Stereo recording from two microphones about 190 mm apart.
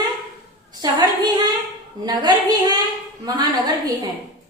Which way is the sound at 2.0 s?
20° right (ahead or behind).